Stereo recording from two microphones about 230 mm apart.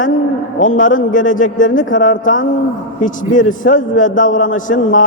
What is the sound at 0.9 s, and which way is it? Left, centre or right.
A man's voice, left.